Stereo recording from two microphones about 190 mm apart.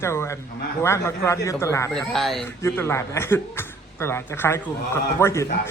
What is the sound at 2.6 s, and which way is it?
A man's voice, 15° left (ahead or behind).